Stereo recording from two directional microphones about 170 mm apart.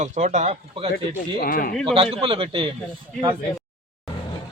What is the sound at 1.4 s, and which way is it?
Speech, 55° left (ahead or behind).